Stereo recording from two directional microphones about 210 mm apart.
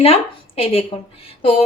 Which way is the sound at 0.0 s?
25° left (ahead or behind).